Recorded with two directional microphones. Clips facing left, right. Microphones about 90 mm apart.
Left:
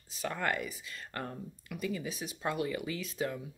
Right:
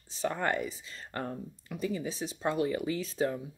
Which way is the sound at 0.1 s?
30° right (ahead or behind).